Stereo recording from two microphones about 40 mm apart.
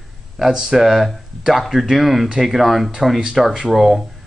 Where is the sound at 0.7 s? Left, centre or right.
Centre.